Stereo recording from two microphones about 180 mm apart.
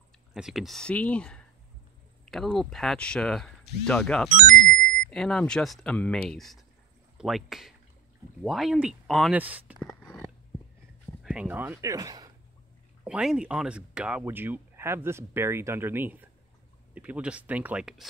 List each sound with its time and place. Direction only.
0.3 s speech: centre (ahead or behind)
4.3 s speech: 50° right (ahead or behind)
5.1 s speech: 5° left (ahead or behind)
11.2 s speech: 10° right (ahead or behind)
13.0 s speech: 5° right (ahead or behind)